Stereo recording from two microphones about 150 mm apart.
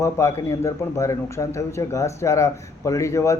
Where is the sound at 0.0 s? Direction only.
20° left (ahead or behind).